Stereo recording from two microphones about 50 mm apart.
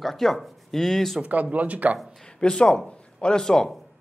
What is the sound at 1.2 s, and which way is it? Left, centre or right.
Speech, right.